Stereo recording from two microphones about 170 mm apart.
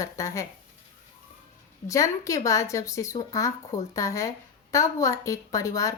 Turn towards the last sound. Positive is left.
turn(degrees=20)  # may be behind; listen again after turning